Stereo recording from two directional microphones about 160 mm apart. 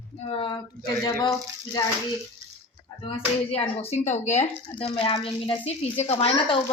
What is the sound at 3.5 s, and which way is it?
Speech, 40° left (ahead or behind).